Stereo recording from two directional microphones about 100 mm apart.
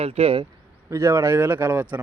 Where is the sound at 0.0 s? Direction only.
80° right.